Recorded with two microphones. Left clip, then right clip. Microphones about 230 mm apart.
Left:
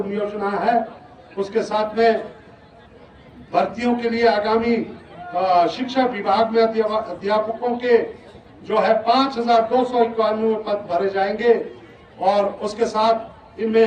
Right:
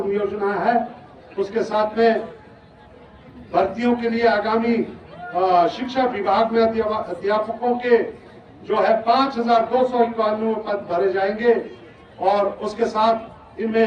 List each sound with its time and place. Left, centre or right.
0.1 s a man's voice: left
3.5 s a man's voice: left